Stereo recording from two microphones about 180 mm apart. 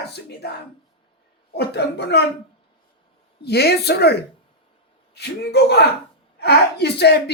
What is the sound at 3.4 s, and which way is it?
A man's voice, 65° left (ahead or behind).